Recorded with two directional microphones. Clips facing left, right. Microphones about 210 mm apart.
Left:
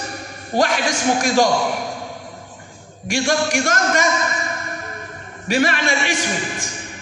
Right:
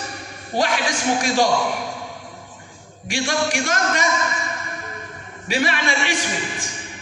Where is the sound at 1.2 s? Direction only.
45° left (ahead or behind).